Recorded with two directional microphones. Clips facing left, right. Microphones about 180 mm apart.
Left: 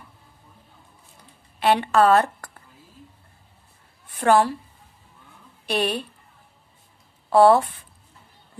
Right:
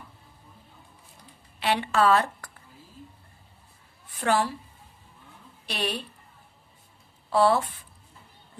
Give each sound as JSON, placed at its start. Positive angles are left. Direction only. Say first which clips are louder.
{"t": 1.5, "sound": "a woman's voice", "louder": "left 6 dB", "side_deg": 50}
{"t": 4.2, "sound": "a woman's voice", "louder": "left 7 dB", "side_deg": 50}
{"t": 5.6, "sound": "a woman's voice", "louder": "left 7 dB", "side_deg": 50}
{"t": 7.3, "sound": "speech", "louder": "left 7 dB", "side_deg": 50}